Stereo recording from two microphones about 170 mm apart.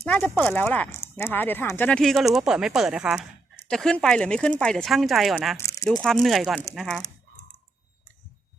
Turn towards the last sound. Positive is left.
turn(degrees=0)  # may be behind; listen again after turning